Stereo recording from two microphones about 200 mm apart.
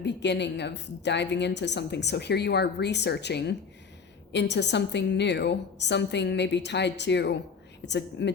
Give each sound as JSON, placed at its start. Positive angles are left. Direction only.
{"t": 0.0, "sound": "a woman's voice", "side_deg": 60}